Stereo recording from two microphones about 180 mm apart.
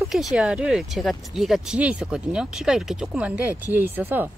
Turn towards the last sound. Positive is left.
turn(degrees=-10)  # may be behind; listen again after turning